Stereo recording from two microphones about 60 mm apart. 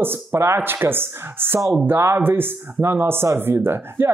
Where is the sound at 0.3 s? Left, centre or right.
Right.